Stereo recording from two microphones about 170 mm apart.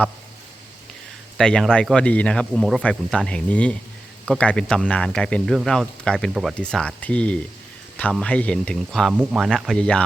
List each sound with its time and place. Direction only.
1.4 s speech: 5° left (ahead or behind)